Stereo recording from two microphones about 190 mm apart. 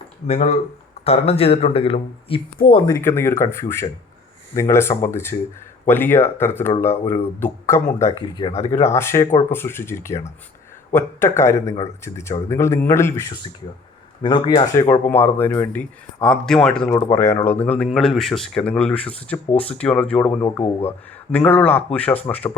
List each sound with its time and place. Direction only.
0.3 s speech: 35° left (ahead or behind)
2.8 s speech: 15° left (ahead or behind)
8.4 s speech: 30° left (ahead or behind)
8.8 s speech: 15° left (ahead or behind)